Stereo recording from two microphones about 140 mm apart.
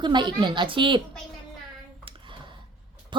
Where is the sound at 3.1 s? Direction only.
35° right (ahead or behind).